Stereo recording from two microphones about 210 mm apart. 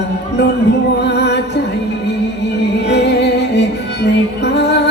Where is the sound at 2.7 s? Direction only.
55° left (ahead or behind).